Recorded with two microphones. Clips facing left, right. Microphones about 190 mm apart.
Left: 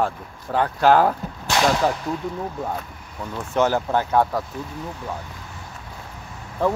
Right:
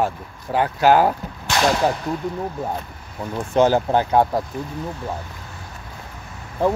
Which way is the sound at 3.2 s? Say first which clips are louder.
Right 4 dB; 15° right (ahead or behind).